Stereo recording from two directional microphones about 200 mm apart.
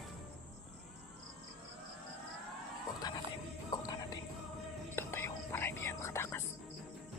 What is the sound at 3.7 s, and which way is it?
Whispering, 20° left (ahead or behind).